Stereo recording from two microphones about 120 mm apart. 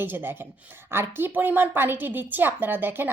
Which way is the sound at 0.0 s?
15° right (ahead or behind).